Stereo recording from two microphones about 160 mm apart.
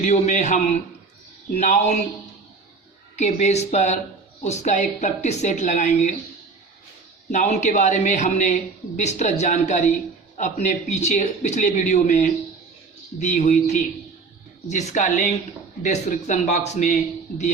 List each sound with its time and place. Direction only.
0.0 s a man's voice: 50° left (ahead or behind)
3.2 s a man's voice: 45° left (ahead or behind)
7.3 s a man's voice: 45° left (ahead or behind)